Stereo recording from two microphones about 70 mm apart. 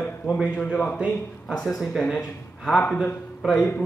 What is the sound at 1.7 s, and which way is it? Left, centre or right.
Speech, centre.